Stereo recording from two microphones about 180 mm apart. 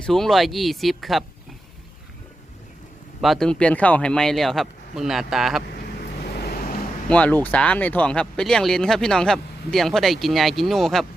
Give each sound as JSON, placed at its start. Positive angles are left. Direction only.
{"t": 0.0, "sound": "speech", "side_deg": 0}
{"t": 3.2, "sound": "speech", "side_deg": 0}
{"t": 6.3, "sound": "vehicle", "side_deg": 60}
{"t": 7.1, "sound": "speech", "side_deg": 10}